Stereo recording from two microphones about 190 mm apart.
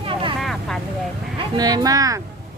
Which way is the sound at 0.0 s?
25° right (ahead or behind).